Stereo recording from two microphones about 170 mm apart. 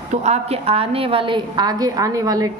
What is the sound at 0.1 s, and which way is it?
A woman's voice, 40° right (ahead or behind).